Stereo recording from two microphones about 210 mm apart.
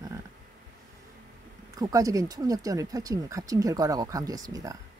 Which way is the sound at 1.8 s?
15° right (ahead or behind).